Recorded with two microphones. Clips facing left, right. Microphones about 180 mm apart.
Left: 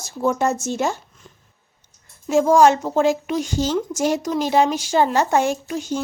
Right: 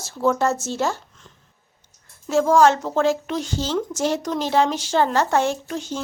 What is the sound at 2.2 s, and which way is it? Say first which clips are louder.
Speech: left 2 dB; 15° left (ahead or behind).